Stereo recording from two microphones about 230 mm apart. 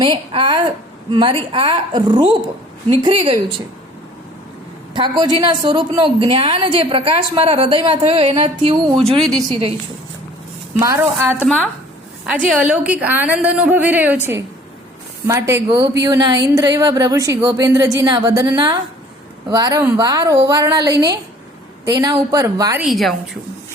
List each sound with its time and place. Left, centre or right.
0.0 s a woman's voice: right
4.9 s a woman's voice: centre
10.8 s a woman's voice: centre
22.8 s a woman's voice: centre